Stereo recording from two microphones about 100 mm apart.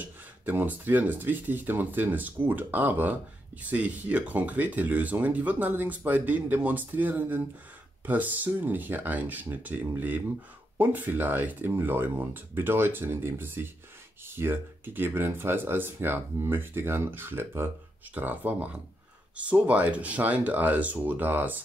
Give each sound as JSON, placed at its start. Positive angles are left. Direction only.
{"t": 0.0, "sound": "speech", "side_deg": -20}